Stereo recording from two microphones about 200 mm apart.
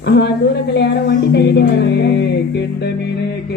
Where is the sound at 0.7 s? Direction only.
60° left (ahead or behind).